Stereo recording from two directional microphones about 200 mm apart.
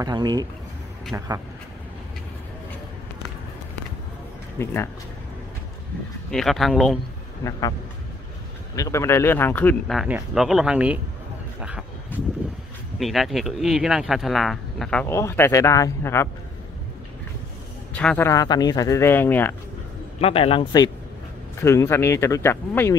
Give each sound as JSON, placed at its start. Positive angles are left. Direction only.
{"t": 0.0, "sound": "a man's voice", "side_deg": -20}
{"t": 4.6, "sound": "speech", "side_deg": 10}
{"t": 6.3, "sound": "speech", "side_deg": 0}
{"t": 8.7, "sound": "speech", "side_deg": 15}
{"t": 12.4, "sound": "a sound", "side_deg": -5}
{"t": 13.0, "sound": "speech", "side_deg": 0}
{"t": 17.9, "sound": "speech", "side_deg": 10}
{"t": 20.2, "sound": "a man's voice", "side_deg": 30}